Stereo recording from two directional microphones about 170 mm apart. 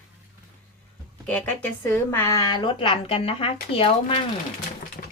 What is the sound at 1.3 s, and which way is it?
A woman's voice, 10° left (ahead or behind).